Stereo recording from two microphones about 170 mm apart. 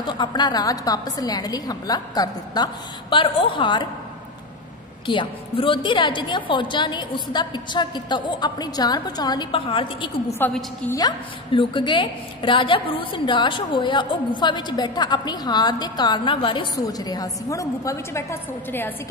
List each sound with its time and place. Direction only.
0.0 s a woman's voice: 25° left (ahead or behind)
5.0 s a woman's voice: 30° left (ahead or behind)
10.4 s a woman's voice: 10° left (ahead or behind)
11.0 s a woman's voice: 25° left (ahead or behind)